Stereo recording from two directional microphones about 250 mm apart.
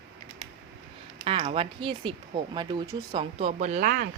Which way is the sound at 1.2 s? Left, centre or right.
Right.